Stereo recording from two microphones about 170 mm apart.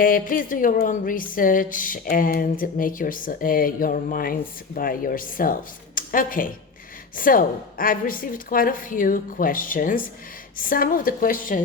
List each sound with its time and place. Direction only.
0.0 s a woman's voice: 55° left (ahead or behind)